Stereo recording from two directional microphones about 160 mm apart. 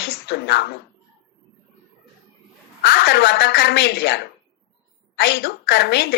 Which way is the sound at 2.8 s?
85° left.